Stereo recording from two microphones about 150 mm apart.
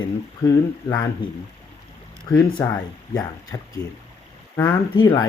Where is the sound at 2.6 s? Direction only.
20° left (ahead or behind).